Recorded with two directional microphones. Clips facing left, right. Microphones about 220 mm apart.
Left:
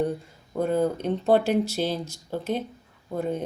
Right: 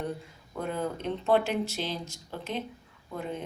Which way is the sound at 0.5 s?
40° left (ahead or behind).